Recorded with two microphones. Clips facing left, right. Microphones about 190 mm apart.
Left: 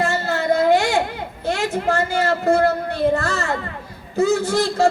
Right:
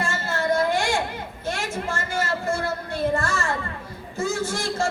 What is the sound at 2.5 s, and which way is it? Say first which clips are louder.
Speech: left 9 dB; 65° left (ahead or behind).